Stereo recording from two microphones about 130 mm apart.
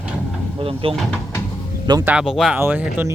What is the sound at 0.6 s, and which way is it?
Speech, 45° right (ahead or behind).